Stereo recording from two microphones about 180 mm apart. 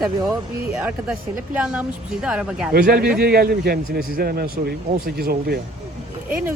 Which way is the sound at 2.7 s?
60° right (ahead or behind).